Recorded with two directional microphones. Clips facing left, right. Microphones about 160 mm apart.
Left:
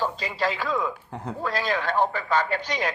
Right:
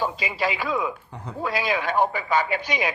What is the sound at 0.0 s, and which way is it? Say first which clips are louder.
A man's voice: right 1 dB; 10° right (ahead or behind).